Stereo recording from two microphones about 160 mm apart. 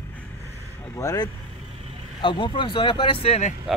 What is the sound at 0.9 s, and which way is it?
Speech, 20° left (ahead or behind).